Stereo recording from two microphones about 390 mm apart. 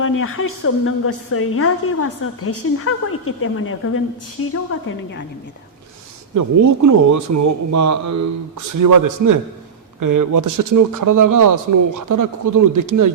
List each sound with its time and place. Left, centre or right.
0.2 s a woman's voice: left
6.3 s a man's voice: right